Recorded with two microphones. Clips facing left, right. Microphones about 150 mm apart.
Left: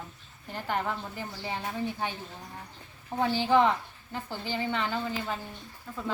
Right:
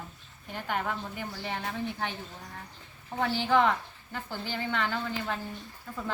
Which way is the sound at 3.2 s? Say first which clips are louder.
Left 2 dB; 15° left (ahead or behind).